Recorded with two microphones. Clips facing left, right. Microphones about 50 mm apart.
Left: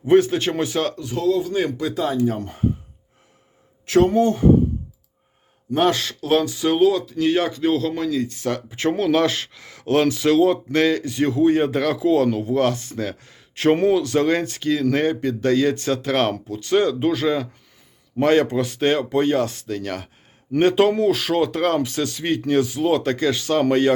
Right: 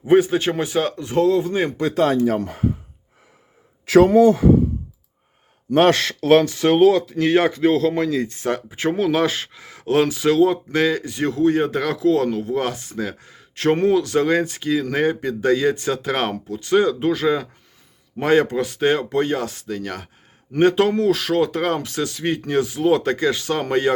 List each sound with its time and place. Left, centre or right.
0.0 s speech: centre
0.9 s speech: right
1.9 s speech: right
5.7 s speech: right
8.3 s speech: right
8.7 s speech: centre